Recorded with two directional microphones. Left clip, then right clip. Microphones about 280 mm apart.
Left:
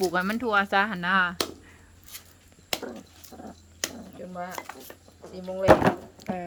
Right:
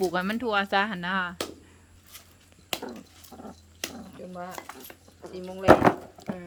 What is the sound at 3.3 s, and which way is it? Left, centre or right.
Wild animals, right.